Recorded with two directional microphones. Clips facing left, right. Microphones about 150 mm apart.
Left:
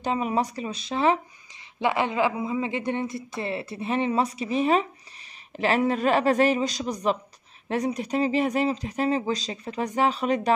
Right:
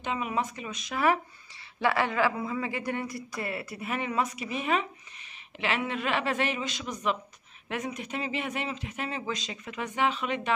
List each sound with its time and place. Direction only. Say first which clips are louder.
0.0 s speech: left 5 dB; 35° left (ahead or behind)